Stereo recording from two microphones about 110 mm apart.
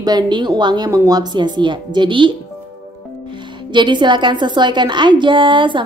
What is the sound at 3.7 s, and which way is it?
A woman's voice, 45° right (ahead or behind).